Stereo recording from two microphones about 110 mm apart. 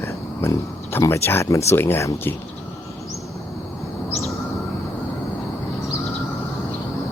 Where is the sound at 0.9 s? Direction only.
25° left (ahead or behind).